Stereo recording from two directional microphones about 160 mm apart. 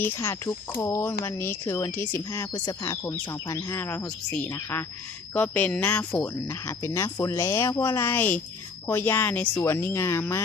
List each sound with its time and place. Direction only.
0.1 s speech: 15° left (ahead or behind)